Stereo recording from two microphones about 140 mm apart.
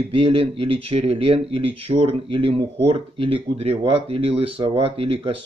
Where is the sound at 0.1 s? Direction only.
40° right (ahead or behind).